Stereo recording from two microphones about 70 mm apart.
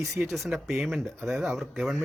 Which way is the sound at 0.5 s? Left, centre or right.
Centre.